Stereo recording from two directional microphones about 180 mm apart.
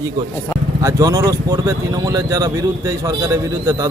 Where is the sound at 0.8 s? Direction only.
15° right (ahead or behind).